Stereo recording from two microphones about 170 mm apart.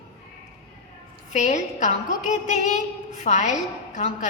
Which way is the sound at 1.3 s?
45° left (ahead or behind).